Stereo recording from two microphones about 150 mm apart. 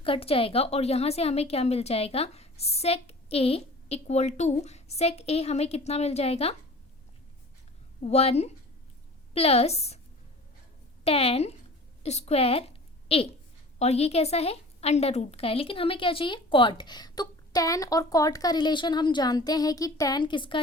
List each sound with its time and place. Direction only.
0.0 s a woman's voice: 40° left (ahead or behind)
8.0 s a woman's voice: 45° left (ahead or behind)
11.0 s a woman's voice: 40° left (ahead or behind)